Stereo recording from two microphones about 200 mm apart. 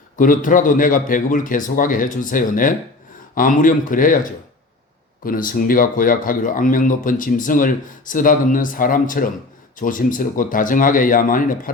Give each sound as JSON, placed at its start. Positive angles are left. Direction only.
{"t": 0.2, "sound": "speech", "side_deg": 40}